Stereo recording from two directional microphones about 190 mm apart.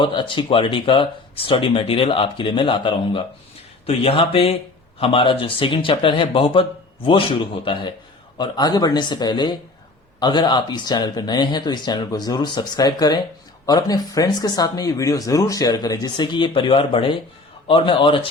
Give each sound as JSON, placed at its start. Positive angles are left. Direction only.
{"t": 0.0, "sound": "speech", "side_deg": 25}